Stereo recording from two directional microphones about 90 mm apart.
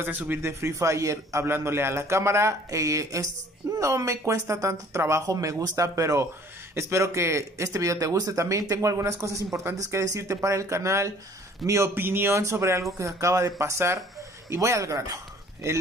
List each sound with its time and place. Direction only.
0.0 s a man's voice: 20° right (ahead or behind)